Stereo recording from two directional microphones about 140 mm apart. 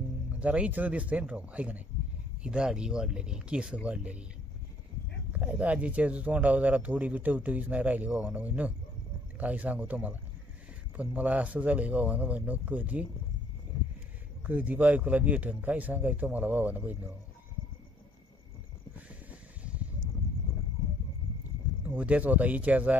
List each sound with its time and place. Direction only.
0.4 s speech: 10° right (ahead or behind)
5.3 s speech: 10° right (ahead or behind)
14.4 s speech: 10° right (ahead or behind)
21.8 s speech: 10° right (ahead or behind)